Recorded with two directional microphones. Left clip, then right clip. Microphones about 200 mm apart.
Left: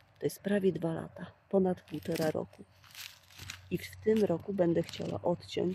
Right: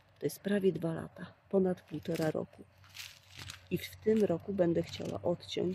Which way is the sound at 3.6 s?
30° right (ahead or behind).